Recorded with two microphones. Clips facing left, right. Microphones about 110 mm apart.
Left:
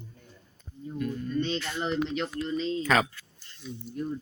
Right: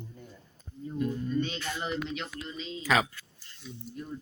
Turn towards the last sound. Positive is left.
turn(degrees=-5)  # may be behind; listen again after turning